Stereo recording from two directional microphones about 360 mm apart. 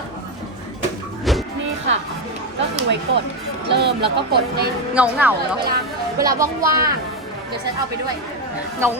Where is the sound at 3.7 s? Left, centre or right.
Right.